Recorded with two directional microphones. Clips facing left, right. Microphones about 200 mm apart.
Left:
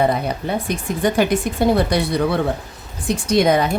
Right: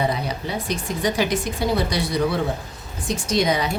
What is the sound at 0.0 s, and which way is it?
Speech, 55° left (ahead or behind).